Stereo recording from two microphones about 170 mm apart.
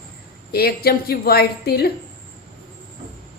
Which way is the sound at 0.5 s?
65° left (ahead or behind).